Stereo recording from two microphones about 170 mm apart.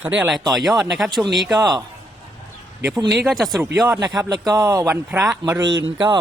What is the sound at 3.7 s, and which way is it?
A man's voice, 20° right (ahead or behind).